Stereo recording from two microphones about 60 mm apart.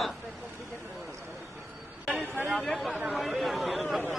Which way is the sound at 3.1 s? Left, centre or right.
Centre.